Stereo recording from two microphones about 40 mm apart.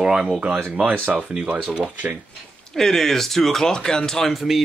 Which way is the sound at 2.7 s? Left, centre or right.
Centre.